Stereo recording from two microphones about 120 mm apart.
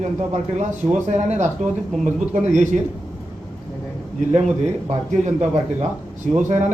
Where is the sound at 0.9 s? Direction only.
80° right.